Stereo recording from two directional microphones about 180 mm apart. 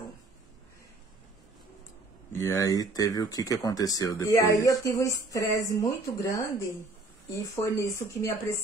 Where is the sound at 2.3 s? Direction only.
15° left (ahead or behind).